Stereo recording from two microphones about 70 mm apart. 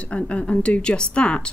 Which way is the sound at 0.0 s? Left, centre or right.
Centre.